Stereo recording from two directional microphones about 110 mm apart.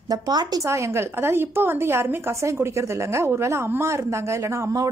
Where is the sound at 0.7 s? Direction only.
25° right (ahead or behind).